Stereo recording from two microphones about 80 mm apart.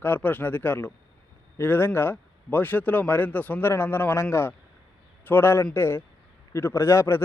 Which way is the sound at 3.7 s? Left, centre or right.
Left.